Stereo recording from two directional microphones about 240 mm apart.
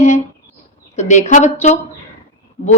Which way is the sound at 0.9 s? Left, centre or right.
Left.